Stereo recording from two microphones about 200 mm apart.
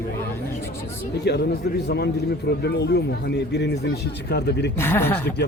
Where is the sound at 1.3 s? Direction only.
55° left (ahead or behind).